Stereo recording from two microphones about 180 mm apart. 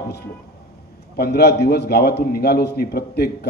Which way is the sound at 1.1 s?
60° left (ahead or behind).